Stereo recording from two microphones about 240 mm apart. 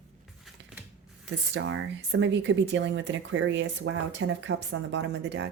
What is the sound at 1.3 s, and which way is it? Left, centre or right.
Speech, right.